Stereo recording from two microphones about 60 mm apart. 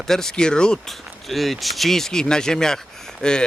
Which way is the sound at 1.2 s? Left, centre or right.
Centre.